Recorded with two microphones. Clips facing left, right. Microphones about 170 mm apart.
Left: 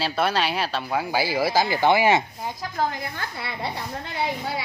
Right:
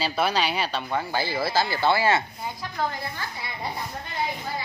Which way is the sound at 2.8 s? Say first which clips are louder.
Left 3 dB; 40° left (ahead or behind).